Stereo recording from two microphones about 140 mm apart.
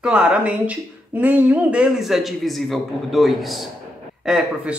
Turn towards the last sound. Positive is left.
turn(degrees=-5)  # may be behind; listen again after turning